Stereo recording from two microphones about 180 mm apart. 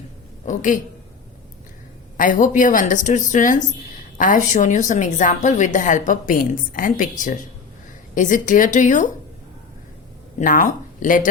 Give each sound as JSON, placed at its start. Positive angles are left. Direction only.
{"t": 0.4, "sound": "a woman's voice", "side_deg": 45}
{"t": 2.1, "sound": "a woman's voice", "side_deg": 45}
{"t": 10.4, "sound": "a woman's voice", "side_deg": 45}